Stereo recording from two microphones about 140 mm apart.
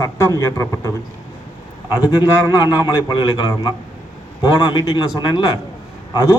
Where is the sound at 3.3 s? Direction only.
25° left (ahead or behind).